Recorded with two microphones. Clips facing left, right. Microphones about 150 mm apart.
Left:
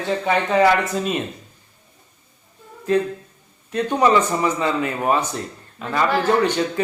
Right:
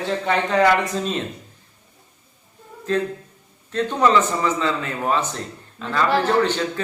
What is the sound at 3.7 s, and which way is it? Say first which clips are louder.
Speech: left 1 dB; 10° left (ahead or behind).